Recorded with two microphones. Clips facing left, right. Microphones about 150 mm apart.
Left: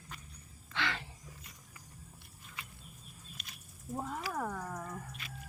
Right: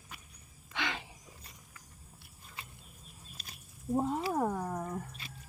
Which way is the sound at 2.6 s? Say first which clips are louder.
Even; 30° right (ahead or behind).